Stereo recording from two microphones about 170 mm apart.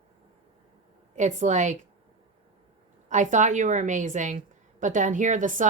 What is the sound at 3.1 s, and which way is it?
Speech, 45° right (ahead or behind).